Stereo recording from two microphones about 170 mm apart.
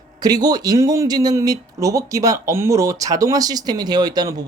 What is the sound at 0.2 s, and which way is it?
Speech, 20° right (ahead or behind).